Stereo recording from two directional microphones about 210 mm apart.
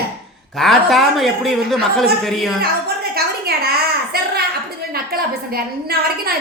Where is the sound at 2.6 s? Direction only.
50° right (ahead or behind).